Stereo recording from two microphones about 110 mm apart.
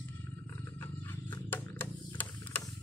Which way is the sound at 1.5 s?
15° left (ahead or behind).